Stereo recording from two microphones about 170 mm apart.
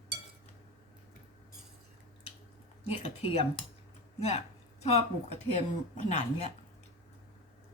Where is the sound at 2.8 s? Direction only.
35° left (ahead or behind).